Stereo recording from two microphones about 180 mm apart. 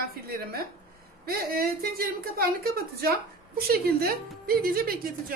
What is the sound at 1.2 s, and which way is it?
A woman's voice, 55° right (ahead or behind).